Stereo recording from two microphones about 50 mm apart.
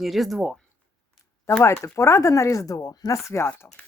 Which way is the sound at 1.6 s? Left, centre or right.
Left.